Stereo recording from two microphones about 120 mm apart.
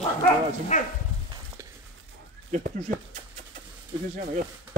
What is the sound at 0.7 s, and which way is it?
Dog, 80° left.